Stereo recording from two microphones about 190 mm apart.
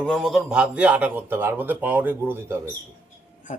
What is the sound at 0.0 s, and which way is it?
Speech, centre (ahead or behind).